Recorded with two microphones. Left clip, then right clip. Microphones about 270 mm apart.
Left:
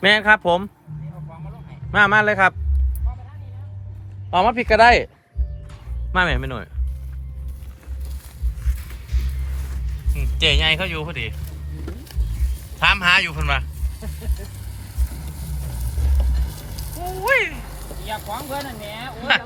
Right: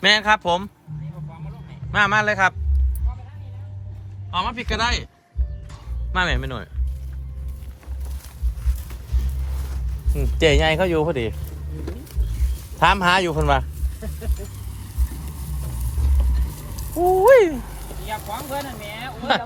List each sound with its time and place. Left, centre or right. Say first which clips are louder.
0.0 s speech: left 2 dB; centre
1.3 s a sound: left 1 dB; centre
4.3 s speech: left 8 dB; centre
6.1 s speech: left 3 dB; centre
10.3 s speech: even; right
12.8 s speech: left 1 dB; right
14.0 s speech: right 2 dB; centre
16.1 s vehicle: left 1 dB; centre
17.2 s speech: right 5 dB; right
18.1 s speech: even; centre